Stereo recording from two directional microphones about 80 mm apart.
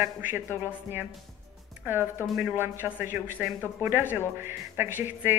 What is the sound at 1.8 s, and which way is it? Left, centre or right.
A woman's voice, right.